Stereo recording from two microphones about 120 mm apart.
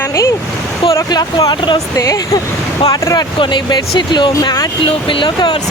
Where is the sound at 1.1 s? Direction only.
35° left (ahead or behind).